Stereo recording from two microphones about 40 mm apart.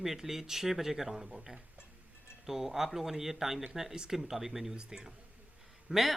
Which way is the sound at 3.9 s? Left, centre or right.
Centre.